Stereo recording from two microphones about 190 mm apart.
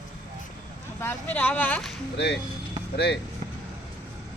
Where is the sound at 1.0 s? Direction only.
10° left (ahead or behind).